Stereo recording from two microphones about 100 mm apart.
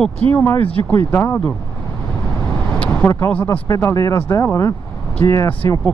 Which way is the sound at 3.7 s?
30° left (ahead or behind).